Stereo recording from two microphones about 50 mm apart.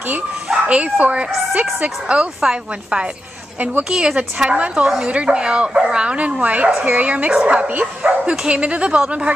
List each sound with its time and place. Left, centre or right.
0.7 s speech: right
3.5 s a woman's voice: right
3.9 s speech: centre